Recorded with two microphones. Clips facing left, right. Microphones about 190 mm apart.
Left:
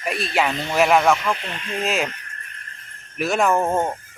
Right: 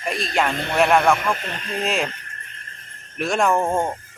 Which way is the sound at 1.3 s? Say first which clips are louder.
Right 1 dB; 40° right (ahead or behind).